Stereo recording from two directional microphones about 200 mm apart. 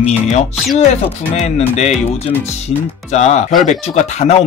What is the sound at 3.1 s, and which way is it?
Speech, 35° left (ahead or behind).